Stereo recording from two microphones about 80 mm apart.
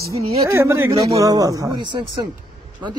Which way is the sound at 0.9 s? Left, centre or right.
Right.